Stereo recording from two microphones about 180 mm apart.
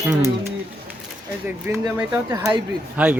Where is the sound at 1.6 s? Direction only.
15° right (ahead or behind).